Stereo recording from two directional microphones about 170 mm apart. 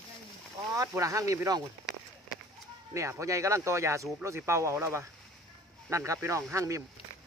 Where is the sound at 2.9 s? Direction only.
15° right (ahead or behind).